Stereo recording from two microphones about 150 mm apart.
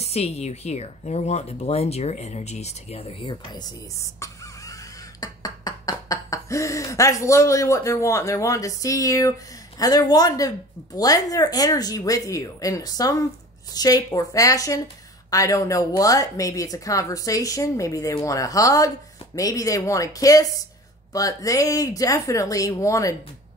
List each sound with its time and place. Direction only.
0.0 s speech: 45° left (ahead or behind)
5.2 s a sound: 25° left (ahead or behind)
9.8 s a woman's voice: 25° left (ahead or behind)